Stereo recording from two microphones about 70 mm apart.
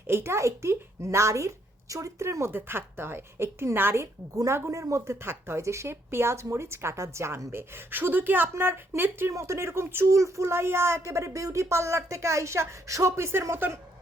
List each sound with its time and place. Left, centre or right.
0.1 s speech: right
5.2 s speech: right
9.3 s speech: right
10.2 s speech: right